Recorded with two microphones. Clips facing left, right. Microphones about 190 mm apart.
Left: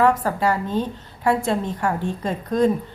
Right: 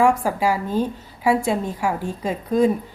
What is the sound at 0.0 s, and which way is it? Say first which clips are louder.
A woman's voice: right 1 dB; 10° right (ahead or behind).